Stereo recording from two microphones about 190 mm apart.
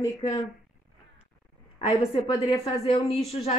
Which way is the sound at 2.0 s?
20° left (ahead or behind).